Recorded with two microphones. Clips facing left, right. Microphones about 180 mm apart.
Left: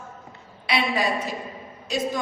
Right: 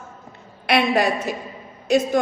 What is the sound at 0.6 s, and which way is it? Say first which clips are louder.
Speech: right 6 dB; 60° right (ahead or behind).